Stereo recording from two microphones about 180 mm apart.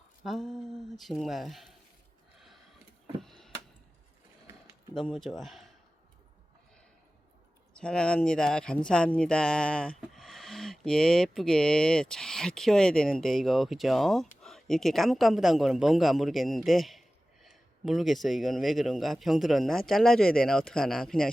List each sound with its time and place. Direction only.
0.3 s speech: centre (ahead or behind)
3.2 s a sound: centre (ahead or behind)
5.1 s speech: centre (ahead or behind)
7.7 s speech: 5° left (ahead or behind)